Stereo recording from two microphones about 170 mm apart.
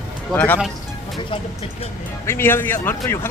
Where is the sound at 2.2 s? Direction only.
15° left (ahead or behind).